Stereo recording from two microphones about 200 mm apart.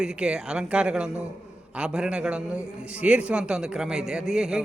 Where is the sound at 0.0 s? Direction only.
5° right (ahead or behind).